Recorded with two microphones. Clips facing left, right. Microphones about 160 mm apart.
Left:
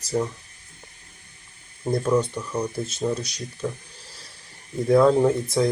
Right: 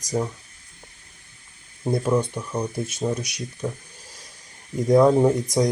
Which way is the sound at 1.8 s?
10° right (ahead or behind).